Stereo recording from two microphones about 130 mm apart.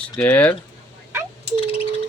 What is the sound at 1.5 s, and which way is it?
Bird, 45° left (ahead or behind).